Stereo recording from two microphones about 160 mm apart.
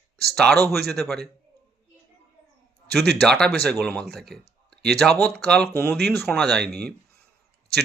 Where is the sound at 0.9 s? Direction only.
Centre (ahead or behind).